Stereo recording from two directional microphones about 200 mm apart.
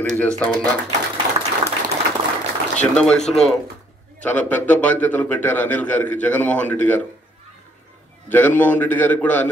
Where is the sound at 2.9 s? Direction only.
5° left (ahead or behind).